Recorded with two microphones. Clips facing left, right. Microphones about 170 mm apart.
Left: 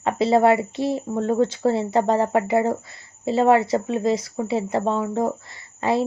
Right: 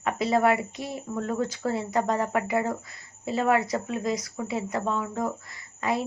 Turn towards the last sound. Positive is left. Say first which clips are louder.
# left 6 dB
turn(degrees=30)  # may be behind; listen again after turning